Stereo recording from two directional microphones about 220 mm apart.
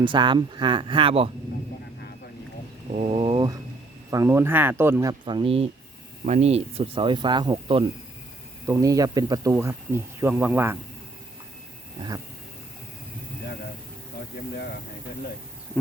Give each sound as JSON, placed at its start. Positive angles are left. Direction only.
{"t": 0.0, "sound": "speech", "side_deg": -20}
{"t": 2.9, "sound": "a sound", "side_deg": -30}
{"t": 4.1, "sound": "speech", "side_deg": -15}